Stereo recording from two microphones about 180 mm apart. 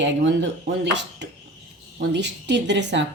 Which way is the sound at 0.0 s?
80° right.